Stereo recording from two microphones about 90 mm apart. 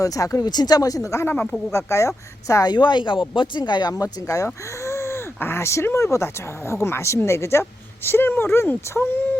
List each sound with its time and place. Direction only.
0.0 s speech: 40° left (ahead or behind)
2.7 s speech: 60° left (ahead or behind)
3.9 s speech: 40° left (ahead or behind)